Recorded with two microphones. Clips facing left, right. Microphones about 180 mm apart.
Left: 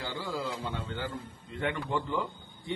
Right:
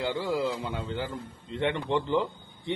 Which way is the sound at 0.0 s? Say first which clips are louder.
Right 7 dB; 20° right (ahead or behind).